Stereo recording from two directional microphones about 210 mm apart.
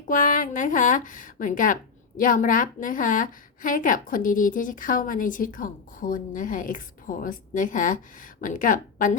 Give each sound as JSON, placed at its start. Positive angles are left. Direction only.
{"t": 0.1, "sound": "speech", "side_deg": 40}